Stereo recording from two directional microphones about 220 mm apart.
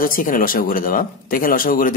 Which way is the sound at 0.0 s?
40° left (ahead or behind).